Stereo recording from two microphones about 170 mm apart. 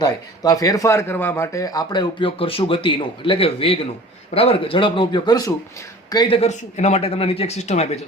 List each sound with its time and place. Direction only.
0.0 s a man's voice: 20° left (ahead or behind); by 8.0 s 40° left (ahead or behind)